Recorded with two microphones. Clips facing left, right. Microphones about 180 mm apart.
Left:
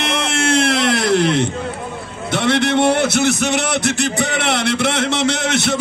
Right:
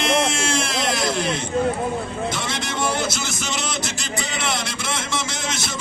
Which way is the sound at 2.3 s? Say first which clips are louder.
Left 11 dB; 65° left (ahead or behind).